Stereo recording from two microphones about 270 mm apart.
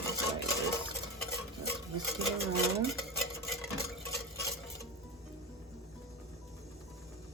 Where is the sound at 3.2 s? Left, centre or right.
Centre.